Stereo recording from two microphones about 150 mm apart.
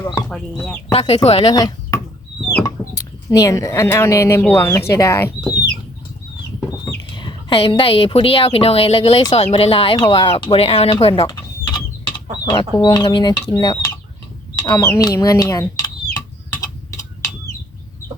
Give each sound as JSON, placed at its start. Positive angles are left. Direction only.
{"t": 0.0, "sound": "chicken", "side_deg": 20}
{"t": 0.6, "sound": "speech", "side_deg": 5}
{"t": 0.9, "sound": "speech", "side_deg": 45}
{"t": 1.5, "sound": "speech", "side_deg": 25}
{"t": 7.1, "sound": "a woman's voice", "side_deg": 30}
{"t": 11.0, "sound": "chicken", "side_deg": 35}
{"t": 12.8, "sound": "speech", "side_deg": 30}
{"t": 13.5, "sound": "chicken", "side_deg": 25}
{"t": 14.5, "sound": "speech", "side_deg": 25}
{"t": 16.6, "sound": "tick-tock", "side_deg": 20}